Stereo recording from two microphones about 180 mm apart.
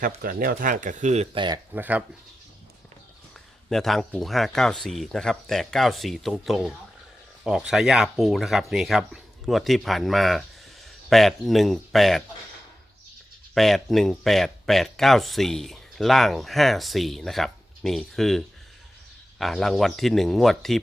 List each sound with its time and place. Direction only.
0.0 s speech: 50° right (ahead or behind); by 1.5 s 30° right (ahead or behind)
1.7 s speech: 10° right (ahead or behind)
3.7 s speech: centre (ahead or behind)
13.5 s speech: centre (ahead or behind)